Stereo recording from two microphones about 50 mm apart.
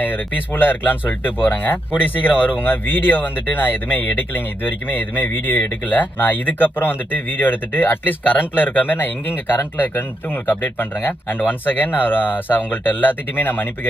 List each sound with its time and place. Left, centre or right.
0.0 s speech: left